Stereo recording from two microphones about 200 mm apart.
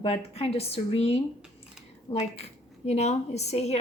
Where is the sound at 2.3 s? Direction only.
30° left (ahead or behind).